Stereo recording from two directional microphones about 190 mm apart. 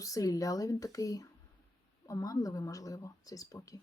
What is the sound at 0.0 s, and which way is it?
Speech, 15° left (ahead or behind).